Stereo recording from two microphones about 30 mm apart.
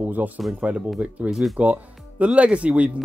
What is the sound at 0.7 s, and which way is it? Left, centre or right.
Speech, right.